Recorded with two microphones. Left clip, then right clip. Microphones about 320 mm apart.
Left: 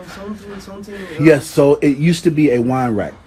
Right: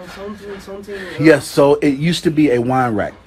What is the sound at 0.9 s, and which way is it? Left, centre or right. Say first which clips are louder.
Speech: even; right.